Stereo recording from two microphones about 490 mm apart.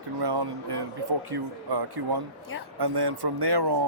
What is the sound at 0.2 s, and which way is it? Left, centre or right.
Speech, right.